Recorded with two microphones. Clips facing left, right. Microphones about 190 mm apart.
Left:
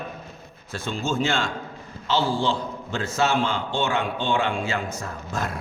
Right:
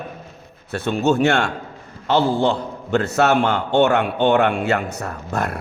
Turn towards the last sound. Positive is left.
turn(degrees=-65)  # may be behind; listen again after turning